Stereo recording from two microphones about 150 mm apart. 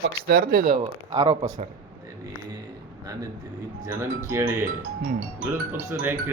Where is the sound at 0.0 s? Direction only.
90° right.